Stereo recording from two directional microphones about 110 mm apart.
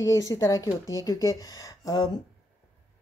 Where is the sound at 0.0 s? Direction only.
30° left (ahead or behind).